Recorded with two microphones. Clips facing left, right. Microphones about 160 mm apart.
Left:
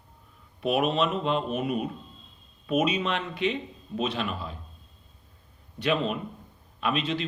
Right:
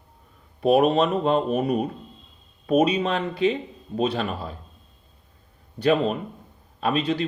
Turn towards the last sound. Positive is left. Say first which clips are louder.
# right 5 dB
turn(degrees=-35)  # may be behind; listen again after turning